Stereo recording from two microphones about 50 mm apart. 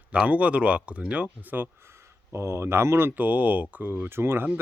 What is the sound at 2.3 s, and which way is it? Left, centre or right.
Speech, right.